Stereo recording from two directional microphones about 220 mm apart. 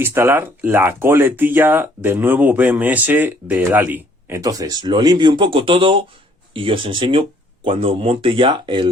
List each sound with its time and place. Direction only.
0.0 s speech: 10° right (ahead or behind)